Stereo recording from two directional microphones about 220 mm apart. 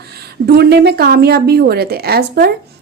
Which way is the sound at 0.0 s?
45° right (ahead or behind).